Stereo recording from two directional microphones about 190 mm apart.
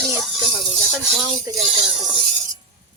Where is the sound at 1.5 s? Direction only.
15° right (ahead or behind).